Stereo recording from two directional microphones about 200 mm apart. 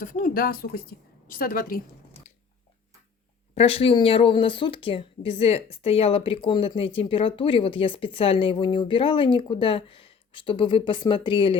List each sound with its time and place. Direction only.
0.0 s a woman's voice: 40° left (ahead or behind)
3.5 s speech: 30° left (ahead or behind)